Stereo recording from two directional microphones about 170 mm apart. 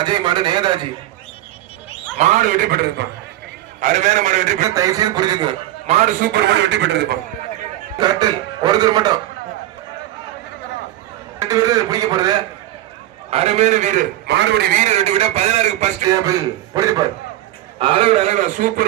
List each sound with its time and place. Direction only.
0.0 s a man's voice: 25° right (ahead or behind)
2.1 s a man's voice: 45° right (ahead or behind); by 3.1 s 65° right (ahead or behind)
3.8 s a man's voice: 45° right (ahead or behind)
4.7 s a man's voice: 20° right (ahead or behind)
5.8 s a man's voice: 40° right (ahead or behind); by 7.2 s 85° right
7.9 s a man's voice: 25° right (ahead or behind)
11.3 s a man's voice: 20° right (ahead or behind)
13.3 s a man's voice: 40° right (ahead or behind)
14.3 s a man's voice: 90° right
14.8 s a man's voice: 40° right (ahead or behind)
16.0 s a man's voice: 20° right (ahead or behind)
17.7 s a man's voice: 30° right (ahead or behind); by 18.9 s 50° right (ahead or behind)